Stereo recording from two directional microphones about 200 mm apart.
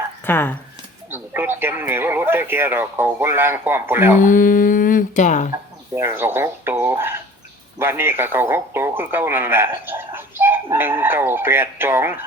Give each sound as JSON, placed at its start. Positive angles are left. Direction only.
{"t": 0.3, "sound": "speech", "side_deg": 10}
{"t": 1.1, "sound": "speech", "side_deg": -10}
{"t": 4.2, "sound": "speech", "side_deg": 40}
{"t": 5.9, "sound": "speech", "side_deg": -10}